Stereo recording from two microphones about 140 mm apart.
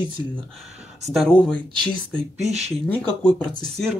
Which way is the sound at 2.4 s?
50° right (ahead or behind).